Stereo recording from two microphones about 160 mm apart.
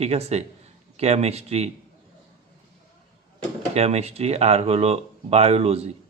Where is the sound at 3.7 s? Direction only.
40° right (ahead or behind).